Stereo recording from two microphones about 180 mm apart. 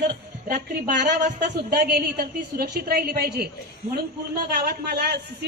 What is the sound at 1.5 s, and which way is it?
A woman's voice, 60° right (ahead or behind).